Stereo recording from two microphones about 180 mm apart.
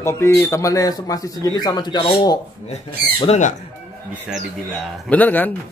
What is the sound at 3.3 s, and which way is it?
Speech, 40° left (ahead or behind).